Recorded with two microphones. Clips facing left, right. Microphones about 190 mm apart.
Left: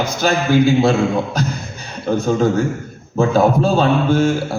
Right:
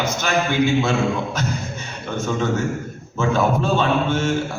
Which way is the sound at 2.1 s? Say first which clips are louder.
Left 6 dB; 35° left (ahead or behind).